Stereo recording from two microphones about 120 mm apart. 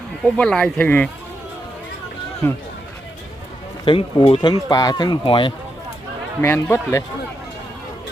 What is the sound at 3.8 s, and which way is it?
Speech, 45° left (ahead or behind).